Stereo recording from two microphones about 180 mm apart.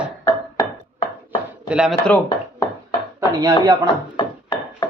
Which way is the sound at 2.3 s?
20° left (ahead or behind).